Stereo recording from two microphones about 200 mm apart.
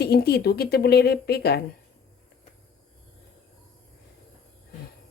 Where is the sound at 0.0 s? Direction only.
50° left (ahead or behind).